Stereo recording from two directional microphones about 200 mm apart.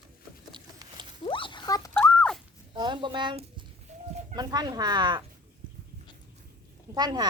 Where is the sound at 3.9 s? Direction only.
35° right (ahead or behind).